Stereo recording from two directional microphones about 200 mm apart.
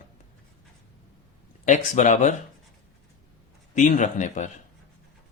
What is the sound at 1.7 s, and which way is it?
Speech, 35° left (ahead or behind).